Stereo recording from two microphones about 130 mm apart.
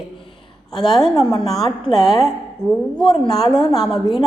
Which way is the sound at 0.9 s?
5° left (ahead or behind).